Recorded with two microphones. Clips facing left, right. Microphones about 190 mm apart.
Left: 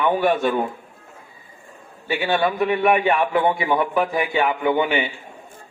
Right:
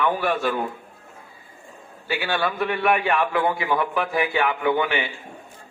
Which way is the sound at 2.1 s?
20° left (ahead or behind).